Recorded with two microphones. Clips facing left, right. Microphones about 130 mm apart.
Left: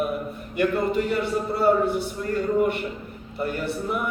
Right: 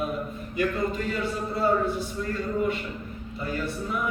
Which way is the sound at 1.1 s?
70° left (ahead or behind).